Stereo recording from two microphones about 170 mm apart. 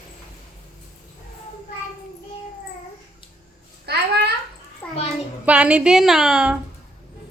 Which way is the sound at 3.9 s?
70° right (ahead or behind).